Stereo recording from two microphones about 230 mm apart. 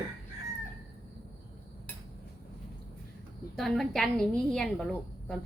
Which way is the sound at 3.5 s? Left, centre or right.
Centre.